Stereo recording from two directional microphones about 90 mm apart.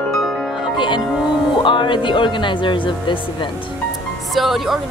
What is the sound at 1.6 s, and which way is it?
Speech, 65° left (ahead or behind).